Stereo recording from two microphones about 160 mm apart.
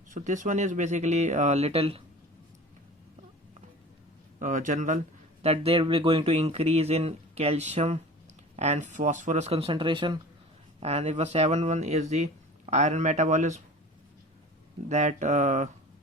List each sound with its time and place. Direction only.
0.1 s speech: 50° right (ahead or behind)
4.4 s speech: 55° right (ahead or behind)
5.4 s speech: 40° right (ahead or behind)
10.8 s speech: 40° right (ahead or behind)
14.8 s speech: 50° right (ahead or behind)